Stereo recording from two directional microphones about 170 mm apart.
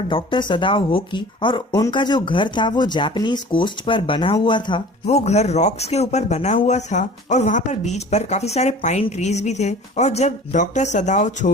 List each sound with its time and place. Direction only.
0.1 s speech: 30° left (ahead or behind)
5.1 s speech: 40° left (ahead or behind)